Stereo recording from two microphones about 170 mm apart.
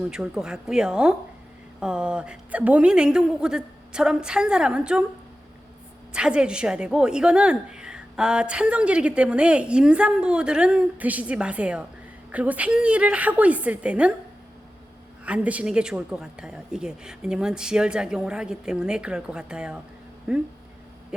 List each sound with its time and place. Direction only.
0.0 s a woman's voice: 5° right (ahead or behind)
6.1 s a woman's voice: 5° right (ahead or behind)
15.2 s a woman's voice: 10° right (ahead or behind)